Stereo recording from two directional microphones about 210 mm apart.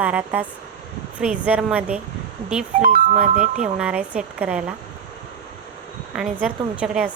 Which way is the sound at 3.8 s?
5° right (ahead or behind).